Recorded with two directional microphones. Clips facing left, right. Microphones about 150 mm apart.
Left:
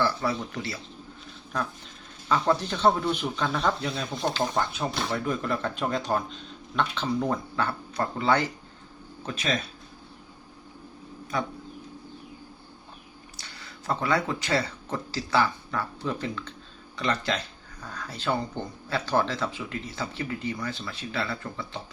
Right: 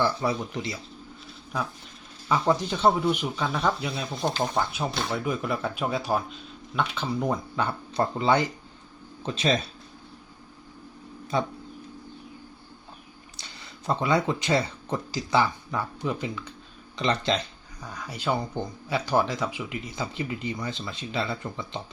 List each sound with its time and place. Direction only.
0.0 s speech: 20° right (ahead or behind)
11.3 s speech: 25° right (ahead or behind)
13.4 s speech: 20° right (ahead or behind)